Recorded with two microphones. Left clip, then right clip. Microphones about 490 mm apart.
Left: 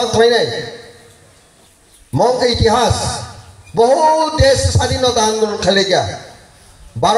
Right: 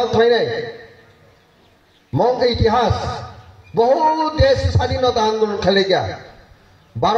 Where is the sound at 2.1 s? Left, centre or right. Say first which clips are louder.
Left 3 dB; right.